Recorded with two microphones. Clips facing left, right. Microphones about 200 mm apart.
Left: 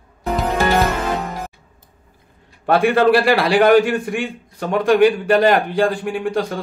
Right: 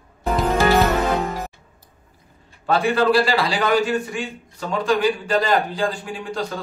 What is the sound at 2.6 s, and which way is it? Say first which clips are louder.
A man's voice: left 4 dB; 60° left (ahead or behind).